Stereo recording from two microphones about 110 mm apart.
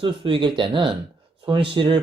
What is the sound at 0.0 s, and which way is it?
Speech, 50° right (ahead or behind).